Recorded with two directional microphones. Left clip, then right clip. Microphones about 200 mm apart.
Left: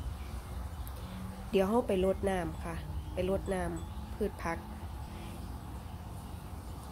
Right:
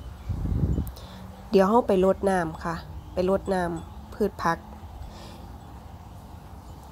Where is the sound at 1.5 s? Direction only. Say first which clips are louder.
Right 9 dB; 35° right (ahead or behind).